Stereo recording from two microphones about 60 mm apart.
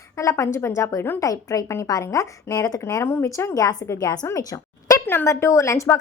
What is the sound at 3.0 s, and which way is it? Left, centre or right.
Speech, left.